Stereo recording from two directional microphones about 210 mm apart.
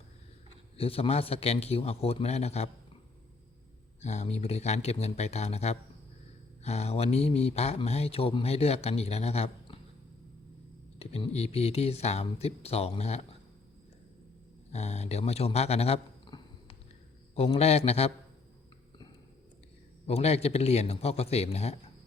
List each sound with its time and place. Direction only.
0.8 s speech: 25° left (ahead or behind)
4.0 s speech: 35° left (ahead or behind)
11.0 s speech: 30° left (ahead or behind)
14.7 s speech: 30° left (ahead or behind)
20.1 s speech: 30° left (ahead or behind)